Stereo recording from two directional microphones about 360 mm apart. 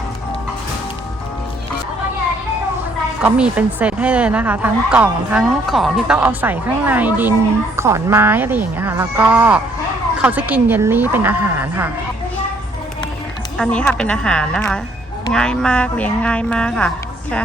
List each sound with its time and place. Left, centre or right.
3.2 s a woman's voice: centre
13.6 s a woman's voice: centre